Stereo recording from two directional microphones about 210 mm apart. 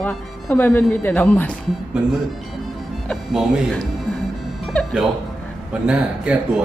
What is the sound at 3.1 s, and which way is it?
Speech, 5° right (ahead or behind).